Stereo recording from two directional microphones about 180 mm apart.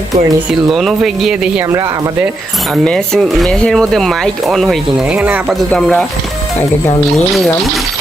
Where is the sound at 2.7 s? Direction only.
Centre (ahead or behind).